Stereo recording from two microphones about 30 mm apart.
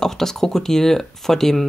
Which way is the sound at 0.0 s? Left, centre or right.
Centre.